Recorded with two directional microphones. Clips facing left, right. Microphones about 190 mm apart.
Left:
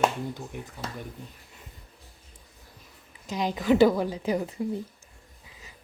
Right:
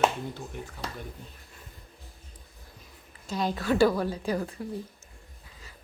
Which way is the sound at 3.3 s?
15° left (ahead or behind).